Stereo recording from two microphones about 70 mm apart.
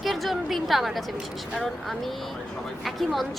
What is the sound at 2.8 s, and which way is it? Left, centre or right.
Speech, centre.